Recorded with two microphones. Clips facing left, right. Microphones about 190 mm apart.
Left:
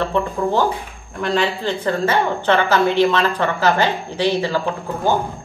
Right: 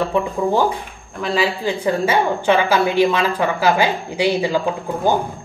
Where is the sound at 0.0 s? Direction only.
10° right (ahead or behind).